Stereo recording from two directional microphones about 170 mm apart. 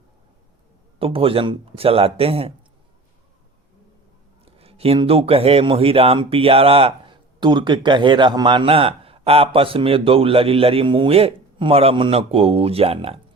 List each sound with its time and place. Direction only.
0.9 s speech: 35° right (ahead or behind)
4.4 s speech: 35° right (ahead or behind)